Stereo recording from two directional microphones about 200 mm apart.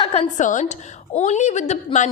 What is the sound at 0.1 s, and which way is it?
A woman's voice, 35° left (ahead or behind).